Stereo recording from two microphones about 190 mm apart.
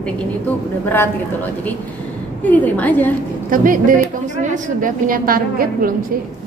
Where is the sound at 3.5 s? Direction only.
45° right (ahead or behind).